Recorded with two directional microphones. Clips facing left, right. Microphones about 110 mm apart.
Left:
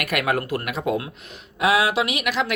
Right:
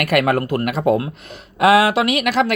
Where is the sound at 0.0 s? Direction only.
45° right (ahead or behind).